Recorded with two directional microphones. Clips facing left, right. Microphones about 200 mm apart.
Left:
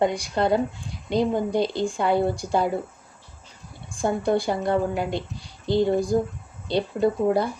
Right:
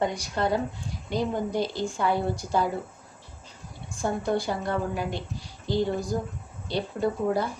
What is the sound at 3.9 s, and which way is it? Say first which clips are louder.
A woman's voice: left 4 dB; 15° left (ahead or behind).